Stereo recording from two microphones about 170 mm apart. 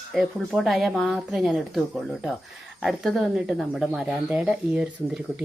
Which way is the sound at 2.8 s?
Centre (ahead or behind).